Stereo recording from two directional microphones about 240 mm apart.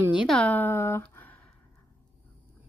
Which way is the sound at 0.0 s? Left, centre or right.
Centre.